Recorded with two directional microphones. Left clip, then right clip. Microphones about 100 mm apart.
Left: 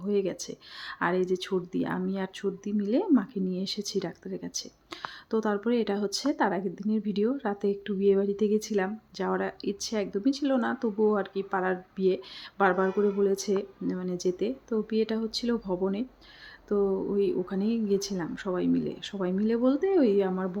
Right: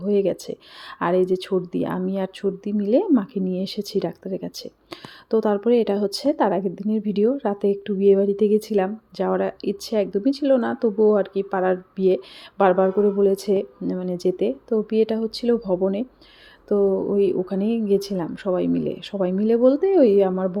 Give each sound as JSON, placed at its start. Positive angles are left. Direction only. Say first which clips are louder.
{"t": 0.0, "sound": "speech", "louder": "right 8 dB", "side_deg": -25}